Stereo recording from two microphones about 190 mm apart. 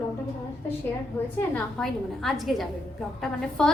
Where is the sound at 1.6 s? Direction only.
5° left (ahead or behind).